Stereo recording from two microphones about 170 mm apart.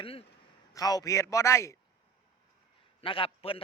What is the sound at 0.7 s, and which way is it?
A man's voice, 20° left (ahead or behind).